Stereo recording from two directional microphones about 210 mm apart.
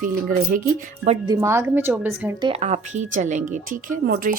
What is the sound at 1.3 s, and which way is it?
A woman's voice, 15° right (ahead or behind).